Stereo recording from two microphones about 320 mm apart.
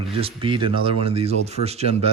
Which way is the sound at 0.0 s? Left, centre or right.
Centre.